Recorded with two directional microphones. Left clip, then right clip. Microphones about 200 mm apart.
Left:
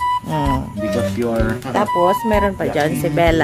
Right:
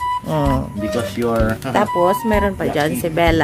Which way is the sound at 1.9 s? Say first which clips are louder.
Left 3 dB; centre (ahead or behind).